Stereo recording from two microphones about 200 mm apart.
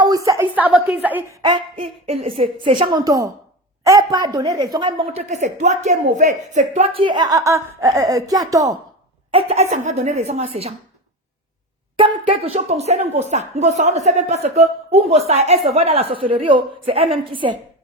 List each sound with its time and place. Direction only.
0.3 s a woman's voice: 10° right (ahead or behind)
1.4 s a woman's voice: 25° right (ahead or behind)
9.3 s a woman's voice: 30° right (ahead or behind)
11.9 s a sound: 25° right (ahead or behind)
12.3 s a woman's voice: 35° right (ahead or behind)